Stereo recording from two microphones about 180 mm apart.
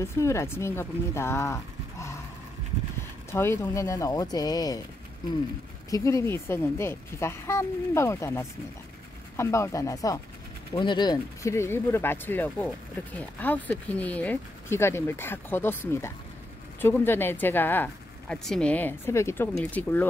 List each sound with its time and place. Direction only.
0.0 s speech: 15° left (ahead or behind)
3.3 s speech: 15° left (ahead or behind)
5.9 s speech: 20° left (ahead or behind)